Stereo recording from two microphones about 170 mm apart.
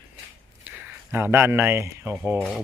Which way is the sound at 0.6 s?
10° right (ahead or behind).